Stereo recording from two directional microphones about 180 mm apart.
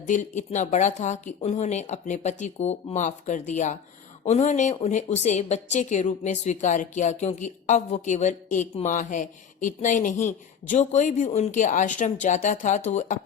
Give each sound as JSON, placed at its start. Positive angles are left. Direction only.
{"t": 0.0, "sound": "a woman's voice", "side_deg": 40}